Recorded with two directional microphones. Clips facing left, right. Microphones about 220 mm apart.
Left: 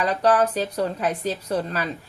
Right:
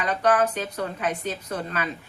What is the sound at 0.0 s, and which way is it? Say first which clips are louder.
Speech: left 2 dB; 35° left (ahead or behind).